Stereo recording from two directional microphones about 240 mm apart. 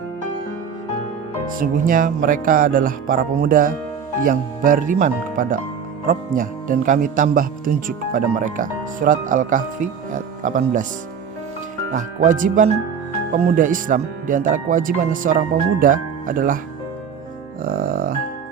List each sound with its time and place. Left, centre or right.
1.5 s speech: right
11.9 s speech: right
17.6 s music: right